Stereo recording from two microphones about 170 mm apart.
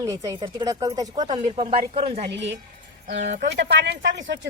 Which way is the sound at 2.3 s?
90° right.